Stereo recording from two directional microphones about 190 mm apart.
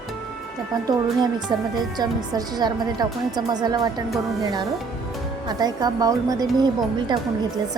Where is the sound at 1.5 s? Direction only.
20° right (ahead or behind).